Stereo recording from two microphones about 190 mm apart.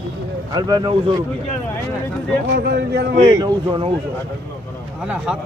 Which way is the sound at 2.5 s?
60° right (ahead or behind).